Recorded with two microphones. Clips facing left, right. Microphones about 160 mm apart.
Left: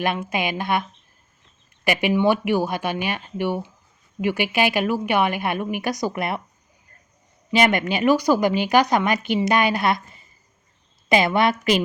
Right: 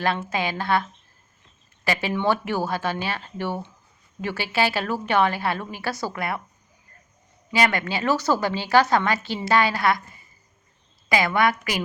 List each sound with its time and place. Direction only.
0.0 s speech: 15° left (ahead or behind)
7.5 s a woman's voice: 20° left (ahead or behind)